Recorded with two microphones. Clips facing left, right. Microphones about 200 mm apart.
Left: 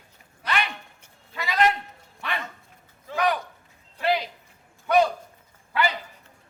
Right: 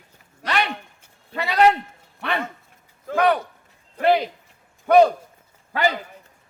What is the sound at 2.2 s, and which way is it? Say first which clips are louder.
Dog: right 6 dB; 60° right (ahead or behind).